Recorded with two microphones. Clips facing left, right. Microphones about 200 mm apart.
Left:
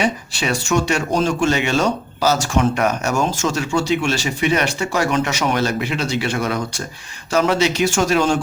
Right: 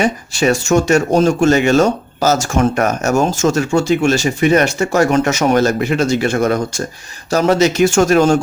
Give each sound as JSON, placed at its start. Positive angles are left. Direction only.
{"t": 0.0, "sound": "speech", "side_deg": -45}